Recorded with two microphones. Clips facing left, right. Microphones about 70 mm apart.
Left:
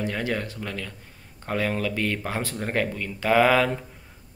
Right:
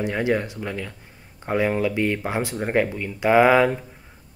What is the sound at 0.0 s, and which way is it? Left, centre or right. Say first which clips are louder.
Speech: right 5 dB; centre.